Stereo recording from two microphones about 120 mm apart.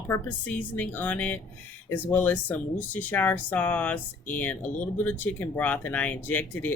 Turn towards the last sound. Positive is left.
turn(degrees=15)  # may be behind; listen again after turning